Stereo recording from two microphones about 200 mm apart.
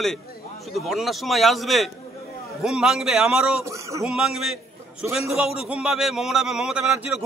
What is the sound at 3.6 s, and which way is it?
Speech, 15° right (ahead or behind).